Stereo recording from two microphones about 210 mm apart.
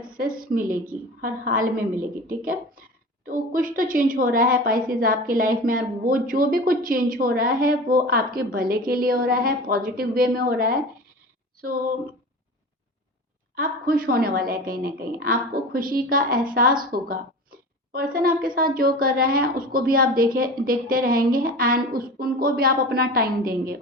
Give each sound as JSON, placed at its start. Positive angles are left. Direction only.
{"t": 0.2, "sound": "a woman's voice", "side_deg": -40}
{"t": 13.6, "sound": "a woman's voice", "side_deg": -40}